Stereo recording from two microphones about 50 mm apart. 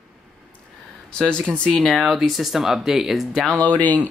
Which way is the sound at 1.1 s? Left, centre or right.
Centre.